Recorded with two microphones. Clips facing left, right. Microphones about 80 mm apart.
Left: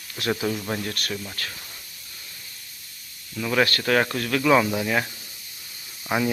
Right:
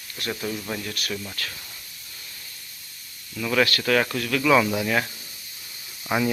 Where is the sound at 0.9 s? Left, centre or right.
Left.